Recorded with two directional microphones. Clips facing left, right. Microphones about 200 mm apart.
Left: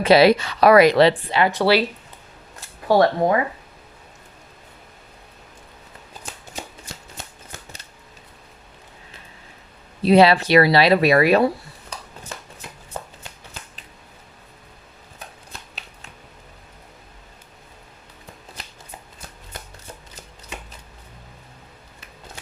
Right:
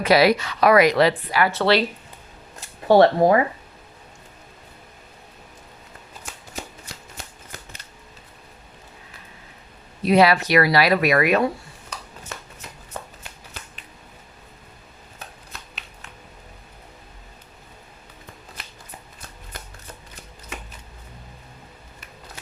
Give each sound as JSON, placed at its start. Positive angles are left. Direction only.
{"t": 0.0, "sound": "speech", "side_deg": 25}
{"t": 2.8, "sound": "speech", "side_deg": -25}
{"t": 10.0, "sound": "speech", "side_deg": 30}